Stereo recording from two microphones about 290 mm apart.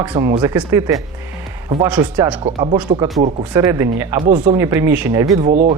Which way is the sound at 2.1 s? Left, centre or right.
Centre.